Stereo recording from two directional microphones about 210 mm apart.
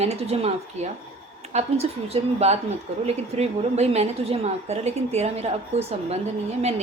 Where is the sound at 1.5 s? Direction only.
30° right (ahead or behind).